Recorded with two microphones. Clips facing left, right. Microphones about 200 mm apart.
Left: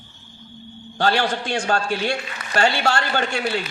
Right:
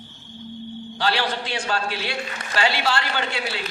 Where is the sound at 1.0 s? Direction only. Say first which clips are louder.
Left 4 dB; 50° left (ahead or behind).